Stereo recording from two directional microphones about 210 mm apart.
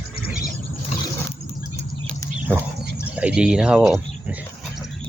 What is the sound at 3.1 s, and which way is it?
Speech, 5° right (ahead or behind).